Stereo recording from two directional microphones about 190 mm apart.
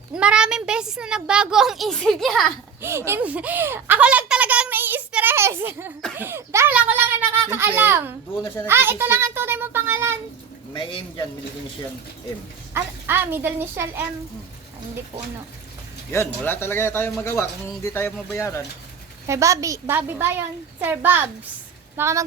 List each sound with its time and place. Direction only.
0.2 s speech: 5° right (ahead or behind)
2.8 s speech: 15° right (ahead or behind)
10.8 s a man's voice: 25° left (ahead or behind)
12.7 s speech: 10° right (ahead or behind)
16.1 s speech: 10° left (ahead or behind)
19.3 s speech: 15° right (ahead or behind)